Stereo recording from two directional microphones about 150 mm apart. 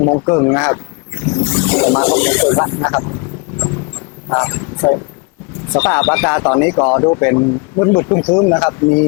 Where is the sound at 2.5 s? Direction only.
25° left (ahead or behind).